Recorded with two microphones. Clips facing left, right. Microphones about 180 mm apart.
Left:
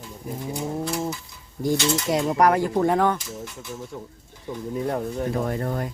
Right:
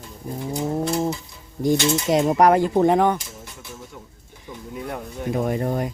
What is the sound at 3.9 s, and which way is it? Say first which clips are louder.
Speech: left 5 dB; 30° left (ahead or behind).